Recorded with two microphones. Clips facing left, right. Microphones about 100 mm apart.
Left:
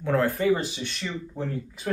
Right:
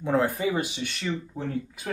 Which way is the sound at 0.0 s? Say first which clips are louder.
Left 1 dB; 20° right (ahead or behind).